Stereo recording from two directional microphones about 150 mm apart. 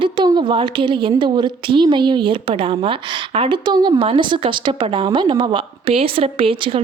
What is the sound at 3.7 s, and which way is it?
Speech, 25° right (ahead or behind).